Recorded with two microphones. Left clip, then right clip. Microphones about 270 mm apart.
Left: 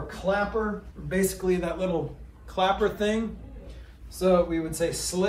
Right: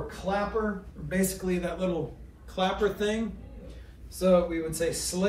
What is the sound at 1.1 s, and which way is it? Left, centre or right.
Speech, centre.